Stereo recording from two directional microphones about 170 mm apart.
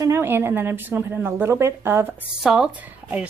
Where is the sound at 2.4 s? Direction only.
5° right (ahead or behind).